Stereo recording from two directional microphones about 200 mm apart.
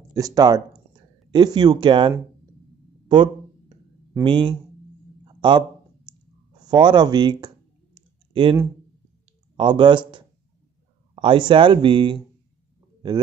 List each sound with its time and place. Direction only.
0.1 s speech: 20° right (ahead or behind)
3.1 s a sound: 25° right (ahead or behind)
4.2 s speech: 25° right (ahead or behind)
5.2 s a sound: 25° right (ahead or behind)
6.7 s clicking: 20° right (ahead or behind)
9.6 s speech: 25° right (ahead or behind)